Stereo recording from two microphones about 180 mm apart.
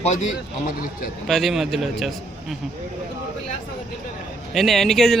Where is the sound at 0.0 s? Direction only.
40° left (ahead or behind).